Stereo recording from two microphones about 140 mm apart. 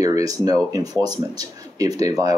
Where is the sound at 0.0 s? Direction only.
25° right (ahead or behind).